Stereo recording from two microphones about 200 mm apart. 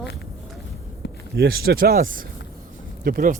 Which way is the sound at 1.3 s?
50° right (ahead or behind).